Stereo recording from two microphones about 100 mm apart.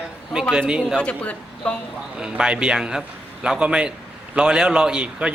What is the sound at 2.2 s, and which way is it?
A man's voice, 10° right (ahead or behind).